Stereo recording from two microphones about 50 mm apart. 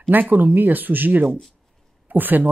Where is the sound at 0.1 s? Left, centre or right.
Right.